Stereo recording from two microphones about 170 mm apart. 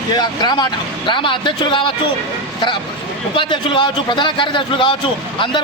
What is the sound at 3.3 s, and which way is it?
A man's voice, 30° left (ahead or behind).